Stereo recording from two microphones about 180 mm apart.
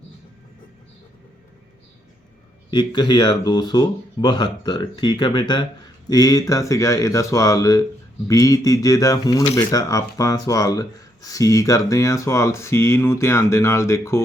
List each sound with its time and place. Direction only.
2.6 s speech: 25° left (ahead or behind)